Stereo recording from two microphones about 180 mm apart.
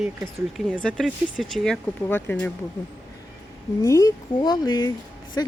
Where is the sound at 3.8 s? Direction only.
20° left (ahead or behind).